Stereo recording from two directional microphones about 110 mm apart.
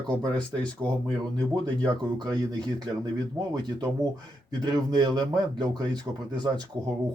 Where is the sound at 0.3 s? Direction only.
10° left (ahead or behind).